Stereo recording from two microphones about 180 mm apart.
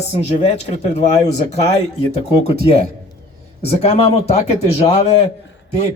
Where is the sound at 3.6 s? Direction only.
35° left (ahead or behind).